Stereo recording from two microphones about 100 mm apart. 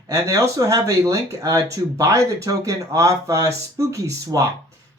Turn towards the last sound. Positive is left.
turn(degrees=-35)  # may be behind; listen again after turning